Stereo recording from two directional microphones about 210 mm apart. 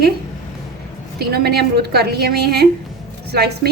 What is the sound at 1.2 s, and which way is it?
A woman's voice, 50° right (ahead or behind).